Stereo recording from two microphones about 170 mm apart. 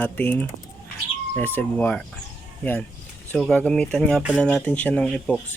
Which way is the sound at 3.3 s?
5° left (ahead or behind).